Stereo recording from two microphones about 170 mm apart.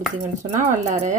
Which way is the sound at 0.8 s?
50° right (ahead or behind).